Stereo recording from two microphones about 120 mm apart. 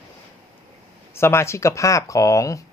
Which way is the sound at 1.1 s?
20° left (ahead or behind).